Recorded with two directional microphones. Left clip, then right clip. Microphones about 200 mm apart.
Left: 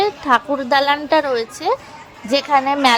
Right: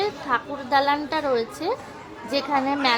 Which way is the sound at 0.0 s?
35° left (ahead or behind).